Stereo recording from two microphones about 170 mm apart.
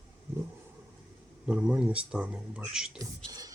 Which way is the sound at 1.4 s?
5° right (ahead or behind).